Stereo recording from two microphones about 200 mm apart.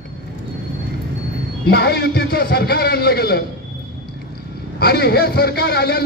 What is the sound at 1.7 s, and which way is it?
A man's voice, 50° left (ahead or behind).